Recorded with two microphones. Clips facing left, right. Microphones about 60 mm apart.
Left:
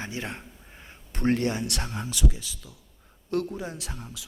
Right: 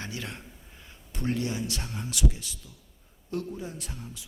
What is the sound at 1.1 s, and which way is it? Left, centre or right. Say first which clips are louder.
Speech: left 5 dB; left.